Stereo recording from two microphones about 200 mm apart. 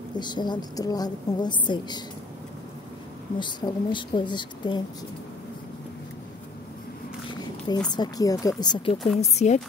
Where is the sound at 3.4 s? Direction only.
20° left (ahead or behind).